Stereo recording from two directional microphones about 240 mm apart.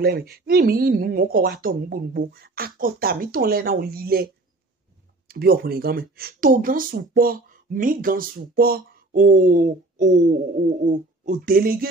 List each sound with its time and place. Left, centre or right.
0.0 s speech: right
5.3 s speech: right